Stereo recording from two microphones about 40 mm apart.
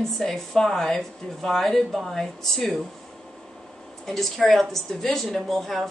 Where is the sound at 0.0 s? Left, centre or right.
Centre.